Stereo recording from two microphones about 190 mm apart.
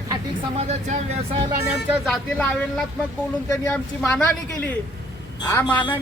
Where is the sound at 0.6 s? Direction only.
35° right (ahead or behind).